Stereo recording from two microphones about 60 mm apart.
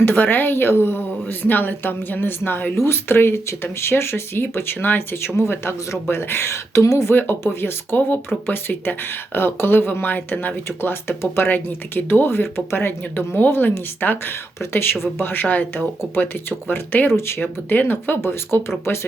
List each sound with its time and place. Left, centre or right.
0.0 s speech: left
7.1 s speech: left
17.1 s speech: left
17.4 s speech: left